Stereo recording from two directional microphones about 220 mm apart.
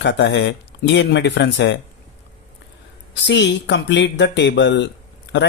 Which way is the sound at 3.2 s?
55° left (ahead or behind).